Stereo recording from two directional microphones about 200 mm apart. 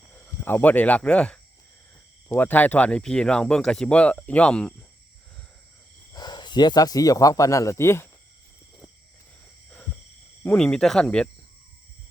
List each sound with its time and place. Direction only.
0.3 s speech: 10° left (ahead or behind)
6.1 s speech: 20° left (ahead or behind)
9.6 s a sound: 5° left (ahead or behind)
10.4 s speech: 5° left (ahead or behind)